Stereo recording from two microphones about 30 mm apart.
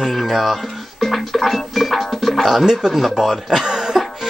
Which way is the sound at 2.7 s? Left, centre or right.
Centre.